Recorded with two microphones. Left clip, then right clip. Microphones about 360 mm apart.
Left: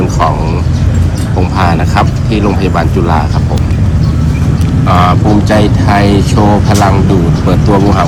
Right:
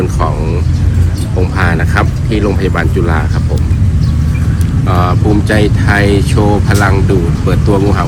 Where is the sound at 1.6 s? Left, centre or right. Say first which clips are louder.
Left 3 dB; centre.